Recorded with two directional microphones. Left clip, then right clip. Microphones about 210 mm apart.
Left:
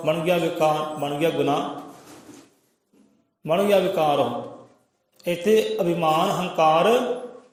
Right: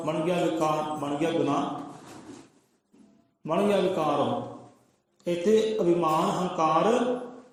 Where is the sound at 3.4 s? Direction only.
50° left (ahead or behind).